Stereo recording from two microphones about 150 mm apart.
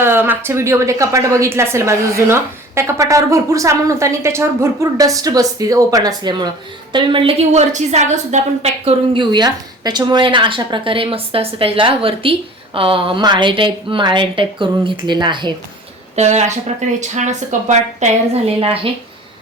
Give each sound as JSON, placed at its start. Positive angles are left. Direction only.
{"t": 0.0, "sound": "a woman's voice", "side_deg": -15}
{"t": 16.1, "sound": "a woman's voice", "side_deg": -50}